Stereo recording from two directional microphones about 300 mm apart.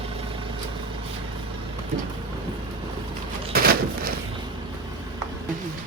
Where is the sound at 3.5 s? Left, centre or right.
Right.